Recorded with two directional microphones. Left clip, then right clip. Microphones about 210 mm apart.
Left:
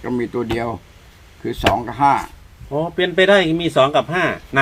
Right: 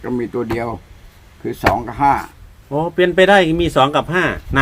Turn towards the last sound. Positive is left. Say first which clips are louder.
# right 1 dB
turn(degrees=-55)  # may be behind; listen again after turning